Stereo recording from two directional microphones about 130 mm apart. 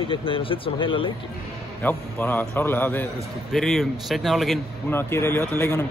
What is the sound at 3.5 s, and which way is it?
A man's voice, centre (ahead or behind).